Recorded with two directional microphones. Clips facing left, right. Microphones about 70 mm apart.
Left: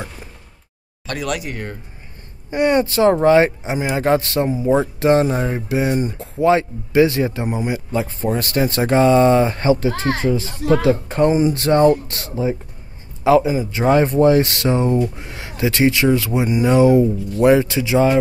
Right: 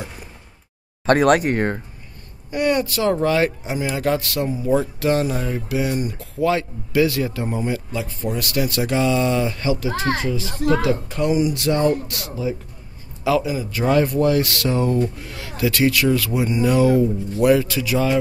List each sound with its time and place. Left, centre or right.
1.0 s speech: right
2.5 s speech: left
7.9 s speech: left